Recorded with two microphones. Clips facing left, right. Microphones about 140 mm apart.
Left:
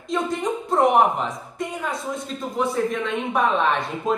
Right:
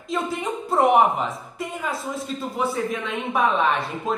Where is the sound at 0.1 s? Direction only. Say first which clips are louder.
Left 2 dB; 5° right (ahead or behind).